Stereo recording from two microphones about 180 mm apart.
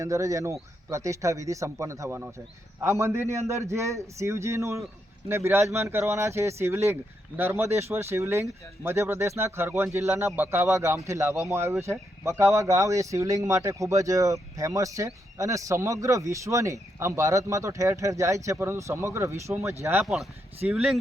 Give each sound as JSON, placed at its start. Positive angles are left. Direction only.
{"t": 0.0, "sound": "speech", "side_deg": -15}